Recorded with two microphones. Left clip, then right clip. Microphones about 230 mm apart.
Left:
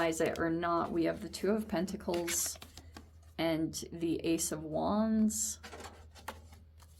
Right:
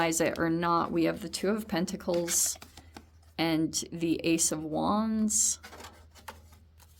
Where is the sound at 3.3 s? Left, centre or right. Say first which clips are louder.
Right 5 dB; right.